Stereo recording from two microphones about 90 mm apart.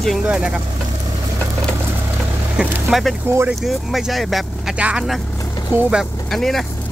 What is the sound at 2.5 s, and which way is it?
Speech, 5° right (ahead or behind).